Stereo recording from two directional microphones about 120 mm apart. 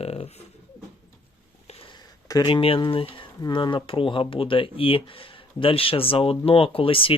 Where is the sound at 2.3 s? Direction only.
45° left (ahead or behind).